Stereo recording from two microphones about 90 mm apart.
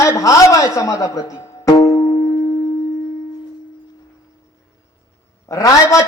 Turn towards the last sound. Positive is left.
turn(degrees=40)  # may be behind; listen again after turning